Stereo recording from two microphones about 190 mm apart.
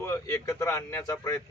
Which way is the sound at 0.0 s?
15° left (ahead or behind).